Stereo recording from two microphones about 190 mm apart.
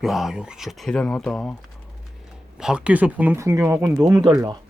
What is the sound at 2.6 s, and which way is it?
Speech, 5° right (ahead or behind).